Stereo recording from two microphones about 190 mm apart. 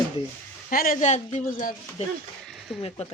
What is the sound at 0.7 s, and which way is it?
Speech, 45° left (ahead or behind).